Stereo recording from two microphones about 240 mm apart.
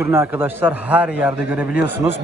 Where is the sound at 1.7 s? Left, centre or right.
Left.